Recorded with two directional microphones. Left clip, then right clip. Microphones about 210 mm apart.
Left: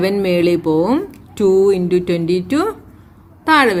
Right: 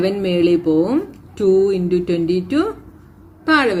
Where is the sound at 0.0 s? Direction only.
45° left (ahead or behind).